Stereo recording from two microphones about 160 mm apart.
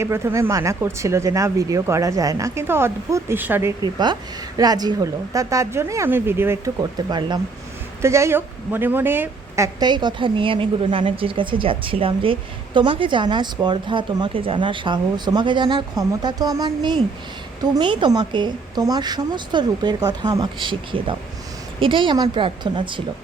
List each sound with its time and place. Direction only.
0.0 s speech: 15° right (ahead or behind)
7.1 s speech: 25° right (ahead or behind)
8.0 s speech: 15° right (ahead or behind)
9.8 s a woman's voice: 25° right (ahead or behind)